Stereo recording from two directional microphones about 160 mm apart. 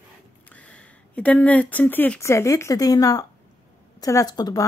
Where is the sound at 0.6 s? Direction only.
10° left (ahead or behind).